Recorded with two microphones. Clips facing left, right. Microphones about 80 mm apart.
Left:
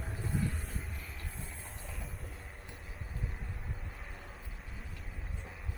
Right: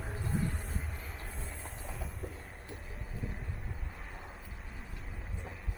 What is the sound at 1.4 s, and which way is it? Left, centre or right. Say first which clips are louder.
Train: right 2 dB; centre.